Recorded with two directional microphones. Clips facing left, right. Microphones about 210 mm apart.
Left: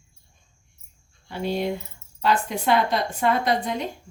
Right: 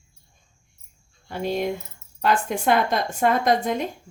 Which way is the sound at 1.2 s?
45° right (ahead or behind).